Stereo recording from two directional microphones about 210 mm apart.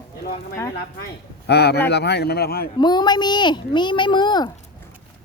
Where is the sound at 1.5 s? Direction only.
50° left (ahead or behind).